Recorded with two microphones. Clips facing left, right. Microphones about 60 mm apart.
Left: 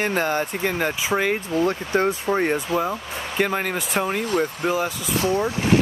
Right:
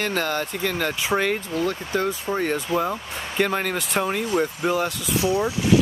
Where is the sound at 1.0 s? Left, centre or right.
Centre.